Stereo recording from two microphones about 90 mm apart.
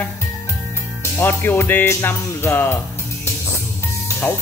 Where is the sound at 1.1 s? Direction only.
25° left (ahead or behind).